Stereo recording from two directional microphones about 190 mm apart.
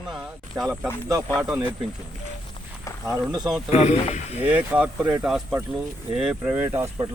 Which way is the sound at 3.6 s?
35° left (ahead or behind).